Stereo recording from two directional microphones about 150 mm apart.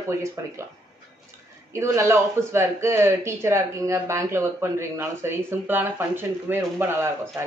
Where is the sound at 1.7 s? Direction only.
20° right (ahead or behind).